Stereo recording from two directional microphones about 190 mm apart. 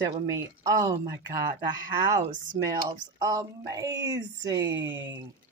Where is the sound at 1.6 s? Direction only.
20° right (ahead or behind).